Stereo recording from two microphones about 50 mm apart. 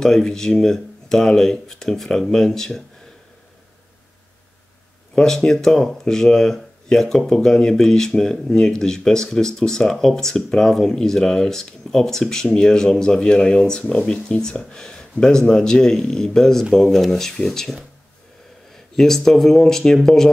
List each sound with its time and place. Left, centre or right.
0.0 s speech: centre
5.1 s speech: centre